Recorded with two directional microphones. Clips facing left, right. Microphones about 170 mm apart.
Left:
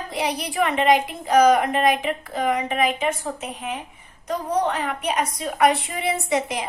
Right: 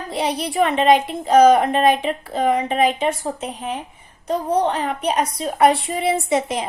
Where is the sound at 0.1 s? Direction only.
25° right (ahead or behind).